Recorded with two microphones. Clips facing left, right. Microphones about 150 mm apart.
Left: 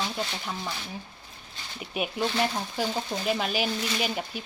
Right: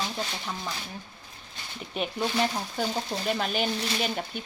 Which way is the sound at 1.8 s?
5° left (ahead or behind).